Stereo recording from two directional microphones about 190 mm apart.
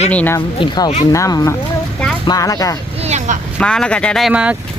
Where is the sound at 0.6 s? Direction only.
30° left (ahead or behind).